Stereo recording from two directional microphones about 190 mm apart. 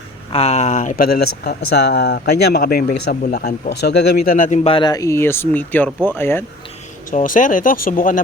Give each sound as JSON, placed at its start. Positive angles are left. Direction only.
{"t": 0.3, "sound": "speech", "side_deg": 30}
{"t": 7.1, "sound": "speech", "side_deg": 45}